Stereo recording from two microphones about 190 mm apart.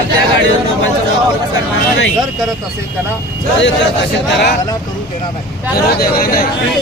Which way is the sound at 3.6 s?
70° left (ahead or behind).